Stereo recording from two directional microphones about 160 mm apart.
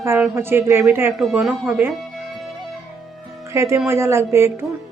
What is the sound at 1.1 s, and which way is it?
Music, centre (ahead or behind).